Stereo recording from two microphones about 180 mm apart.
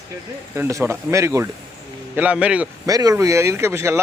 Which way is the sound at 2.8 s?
20° right (ahead or behind).